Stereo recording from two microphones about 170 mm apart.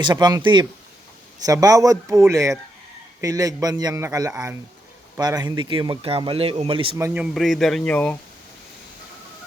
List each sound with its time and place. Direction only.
0.0 s speech: 25° right (ahead or behind)
7.0 s speech: 10° right (ahead or behind); by 8.2 s 10° left (ahead or behind)